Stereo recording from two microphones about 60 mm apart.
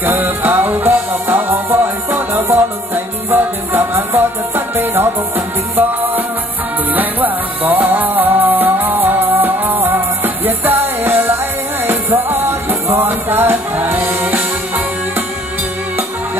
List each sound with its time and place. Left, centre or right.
0.0 s music: right
6.9 s music: right